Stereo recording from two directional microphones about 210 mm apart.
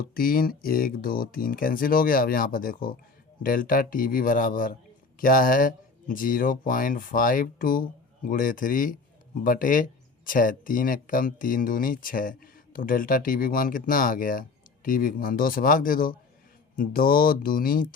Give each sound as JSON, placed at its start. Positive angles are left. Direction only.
{"t": 0.1, "sound": "speech", "side_deg": 45}